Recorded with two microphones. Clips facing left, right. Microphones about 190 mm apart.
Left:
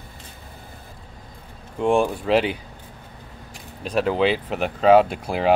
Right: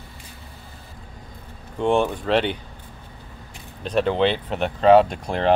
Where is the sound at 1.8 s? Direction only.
5° left (ahead or behind).